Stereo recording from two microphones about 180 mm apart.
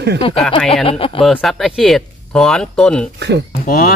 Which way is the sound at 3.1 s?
70° right (ahead or behind).